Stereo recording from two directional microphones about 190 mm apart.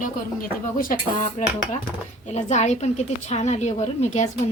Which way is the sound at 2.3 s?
35° left (ahead or behind).